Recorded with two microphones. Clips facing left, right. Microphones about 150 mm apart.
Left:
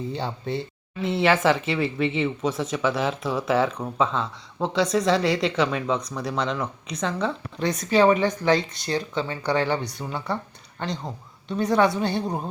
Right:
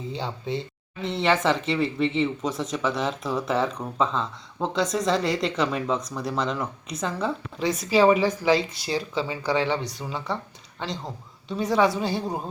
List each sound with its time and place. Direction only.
0.1 s speech: centre (ahead or behind)